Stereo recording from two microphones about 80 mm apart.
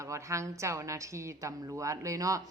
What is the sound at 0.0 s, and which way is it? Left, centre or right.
A woman's voice, right.